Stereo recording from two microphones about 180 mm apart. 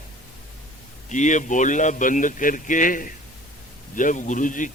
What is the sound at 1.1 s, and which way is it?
A man's voice, 45° left (ahead or behind).